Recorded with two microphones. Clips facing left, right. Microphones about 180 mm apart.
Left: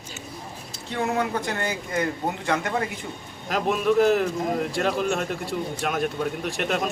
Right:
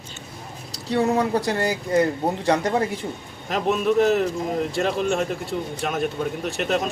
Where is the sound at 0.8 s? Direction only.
35° right (ahead or behind).